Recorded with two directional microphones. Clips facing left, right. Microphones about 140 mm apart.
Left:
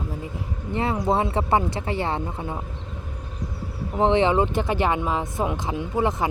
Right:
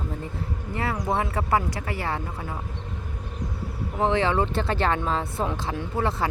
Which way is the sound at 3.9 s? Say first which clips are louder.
Left 4 dB; 20° left (ahead or behind).